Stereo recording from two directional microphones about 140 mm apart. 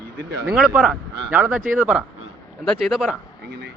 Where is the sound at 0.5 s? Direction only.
5° right (ahead or behind).